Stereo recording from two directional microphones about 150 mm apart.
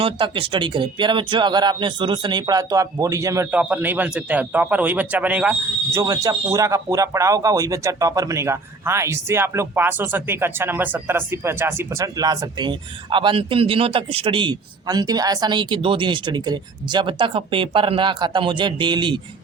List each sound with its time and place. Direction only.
0.0 s speech: 35° right (ahead or behind); by 6.0 s 10° right (ahead or behind)
6.0 s speech: 20° right (ahead or behind)